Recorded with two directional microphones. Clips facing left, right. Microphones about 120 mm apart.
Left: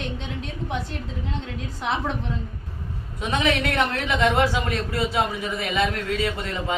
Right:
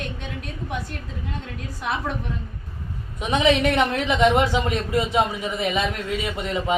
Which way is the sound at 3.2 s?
20° right (ahead or behind).